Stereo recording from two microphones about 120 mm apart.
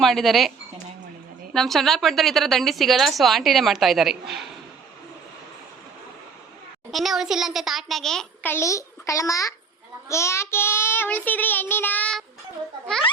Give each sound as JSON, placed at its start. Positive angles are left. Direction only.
{"t": 0.0, "sound": "a woman's voice", "side_deg": 0}
{"t": 1.5, "sound": "a woman's voice", "side_deg": 0}
{"t": 6.9, "sound": "a woman's voice", "side_deg": 0}
{"t": 8.4, "sound": "a child's voice", "side_deg": 25}
{"t": 10.1, "sound": "child singing", "side_deg": 25}